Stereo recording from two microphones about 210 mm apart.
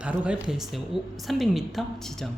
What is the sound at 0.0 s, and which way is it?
Speech, 5° right (ahead or behind).